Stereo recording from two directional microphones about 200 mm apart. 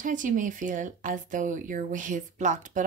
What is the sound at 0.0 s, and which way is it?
Speech, 40° right (ahead or behind).